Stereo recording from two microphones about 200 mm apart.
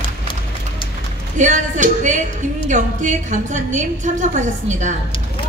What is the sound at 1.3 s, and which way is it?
Speech, 40° right (ahead or behind).